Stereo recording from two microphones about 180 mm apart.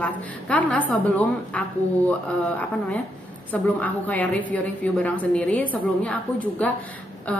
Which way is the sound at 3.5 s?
10° left (ahead or behind).